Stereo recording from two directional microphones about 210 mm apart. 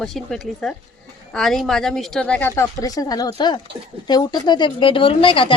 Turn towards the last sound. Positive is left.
turn(degrees=25)  # may be behind; listen again after turning